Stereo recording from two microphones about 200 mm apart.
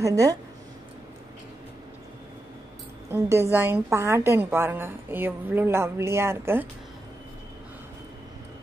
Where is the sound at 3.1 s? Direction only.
15° right (ahead or behind).